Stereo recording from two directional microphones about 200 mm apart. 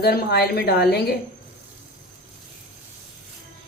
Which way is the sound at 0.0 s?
50° left (ahead or behind).